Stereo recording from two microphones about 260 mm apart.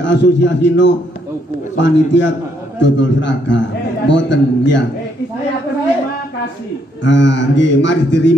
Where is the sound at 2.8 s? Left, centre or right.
Left.